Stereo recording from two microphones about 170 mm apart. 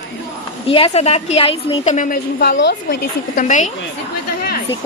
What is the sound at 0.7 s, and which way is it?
A woman's voice, 35° left (ahead or behind).